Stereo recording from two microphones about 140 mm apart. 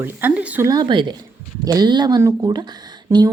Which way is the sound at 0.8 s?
35° right (ahead or behind).